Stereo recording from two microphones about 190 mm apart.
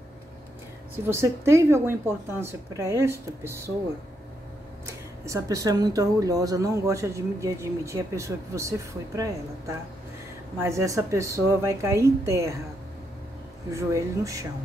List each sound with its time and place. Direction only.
1.0 s speech: 15° right (ahead or behind)
4.8 s speech: 15° right (ahead or behind)
13.7 s speech: 15° right (ahead or behind)